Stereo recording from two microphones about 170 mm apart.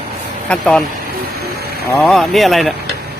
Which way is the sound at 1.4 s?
65° right (ahead or behind).